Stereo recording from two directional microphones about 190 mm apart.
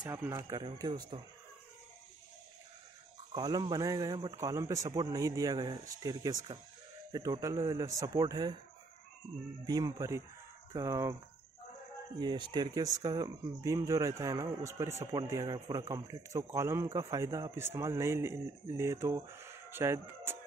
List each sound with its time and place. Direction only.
0.0 s a man's voice: 20° right (ahead or behind)
3.3 s a man's voice: 20° right (ahead or behind)
9.7 s a man's voice: 20° right (ahead or behind)
12.2 s a man's voice: 25° right (ahead or behind)